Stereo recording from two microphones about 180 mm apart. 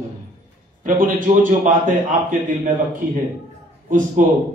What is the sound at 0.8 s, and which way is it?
A man's voice, 45° right (ahead or behind).